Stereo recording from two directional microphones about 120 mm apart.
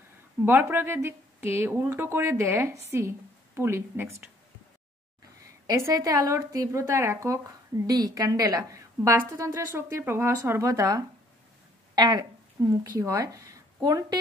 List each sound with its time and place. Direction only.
0.5 s speech: 15° right (ahead or behind)
5.7 s speech: 30° right (ahead or behind)
12.6 s speech: 25° right (ahead or behind)